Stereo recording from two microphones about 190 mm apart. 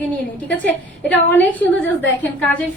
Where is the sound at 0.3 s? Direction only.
10° left (ahead or behind).